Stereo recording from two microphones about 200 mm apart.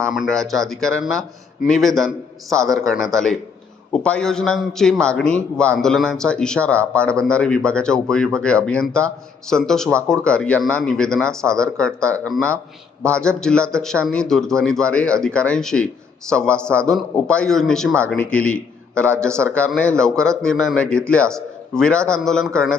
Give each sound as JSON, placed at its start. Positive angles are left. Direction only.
{"t": 0.0, "sound": "a man's voice", "side_deg": 0}
{"t": 2.5, "sound": "speech", "side_deg": -15}
{"t": 3.1, "sound": "a man's voice", "side_deg": 5}